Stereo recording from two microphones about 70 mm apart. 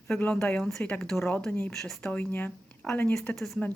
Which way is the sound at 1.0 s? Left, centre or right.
Centre.